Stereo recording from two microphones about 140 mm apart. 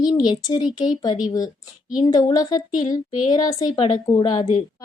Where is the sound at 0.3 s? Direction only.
30° left (ahead or behind).